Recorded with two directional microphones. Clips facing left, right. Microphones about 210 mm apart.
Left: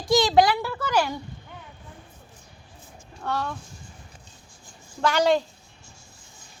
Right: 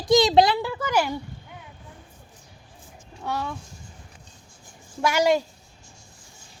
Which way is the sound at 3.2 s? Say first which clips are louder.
Left 1 dB; 10° right (ahead or behind).